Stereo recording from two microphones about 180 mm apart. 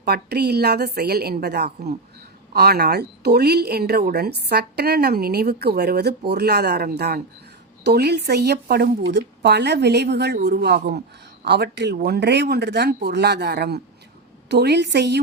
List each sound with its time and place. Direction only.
0.0 s speech: 65° right (ahead or behind)